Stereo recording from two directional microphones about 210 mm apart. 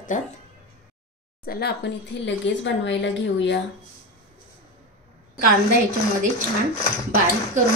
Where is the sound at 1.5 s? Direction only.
50° left (ahead or behind).